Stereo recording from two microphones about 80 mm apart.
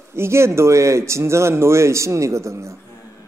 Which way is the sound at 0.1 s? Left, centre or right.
Right.